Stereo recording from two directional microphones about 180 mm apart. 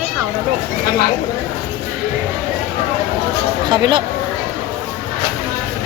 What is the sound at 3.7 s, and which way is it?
Speech, 25° right (ahead or behind).